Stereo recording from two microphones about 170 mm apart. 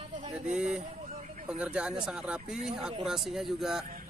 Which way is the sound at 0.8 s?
45° right (ahead or behind).